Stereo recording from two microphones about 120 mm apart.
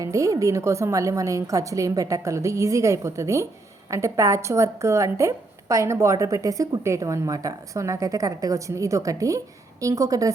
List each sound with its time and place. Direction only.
0.0 s a woman's voice: 25° right (ahead or behind)